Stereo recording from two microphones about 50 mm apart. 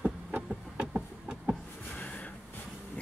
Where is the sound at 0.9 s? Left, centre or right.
Centre.